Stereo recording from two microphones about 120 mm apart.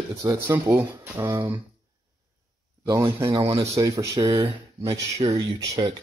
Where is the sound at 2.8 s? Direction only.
25° right (ahead or behind).